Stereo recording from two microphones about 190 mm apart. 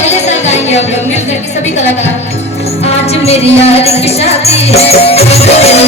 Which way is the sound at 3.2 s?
35° left (ahead or behind).